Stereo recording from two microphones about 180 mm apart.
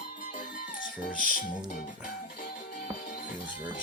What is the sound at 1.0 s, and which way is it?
Speech, 50° left (ahead or behind).